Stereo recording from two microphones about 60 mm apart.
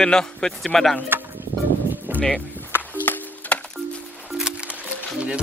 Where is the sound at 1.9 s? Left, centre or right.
Right.